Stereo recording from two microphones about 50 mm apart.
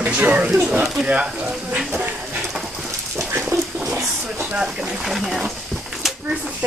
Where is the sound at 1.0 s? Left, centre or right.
Centre.